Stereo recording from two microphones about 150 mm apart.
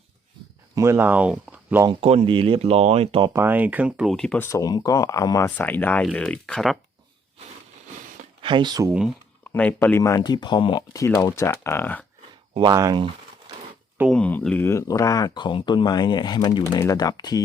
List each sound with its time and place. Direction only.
0.8 s speech: 15° right (ahead or behind)
1.9 s speech: 40° right (ahead or behind)
3.3 s speech: 15° right (ahead or behind); by 4.4 s 5° left (ahead or behind)
4.4 s speech: 20° left (ahead or behind)
5.5 s speech: 10° left (ahead or behind)
8.4 s speech: 35° right (ahead or behind)
8.9 s speech: 5° right (ahead or behind)
9.5 s speech: 10° left (ahead or behind)
12.5 s speech: 25° right (ahead or behind)
14.1 s speech: 10° left (ahead or behind); by 17.4 s 25° left (ahead or behind)